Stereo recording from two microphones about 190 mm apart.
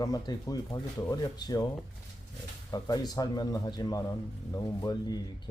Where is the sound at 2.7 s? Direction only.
20° left (ahead or behind).